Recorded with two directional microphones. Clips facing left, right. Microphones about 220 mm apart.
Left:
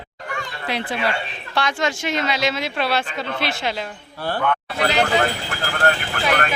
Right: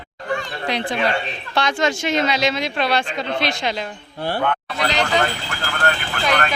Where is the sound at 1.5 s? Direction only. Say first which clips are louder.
Right 2 dB; 20° right (ahead or behind).